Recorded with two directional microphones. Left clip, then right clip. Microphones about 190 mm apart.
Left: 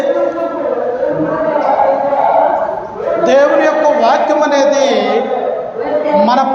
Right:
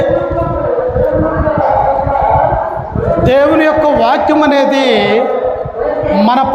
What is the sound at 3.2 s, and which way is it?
A man's voice, 50° right (ahead or behind).